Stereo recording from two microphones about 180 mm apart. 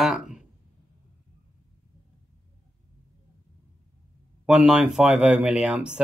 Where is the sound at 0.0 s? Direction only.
Centre (ahead or behind).